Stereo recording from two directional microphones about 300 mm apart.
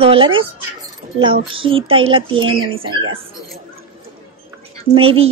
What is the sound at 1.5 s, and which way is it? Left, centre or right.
Speech, centre.